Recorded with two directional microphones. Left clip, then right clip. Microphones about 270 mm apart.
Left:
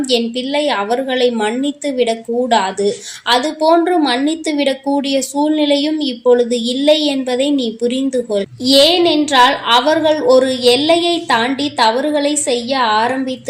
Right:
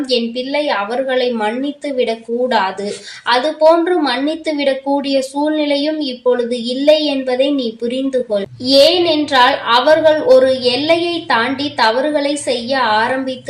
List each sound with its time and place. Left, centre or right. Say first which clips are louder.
0.1 s a woman's voice: even; left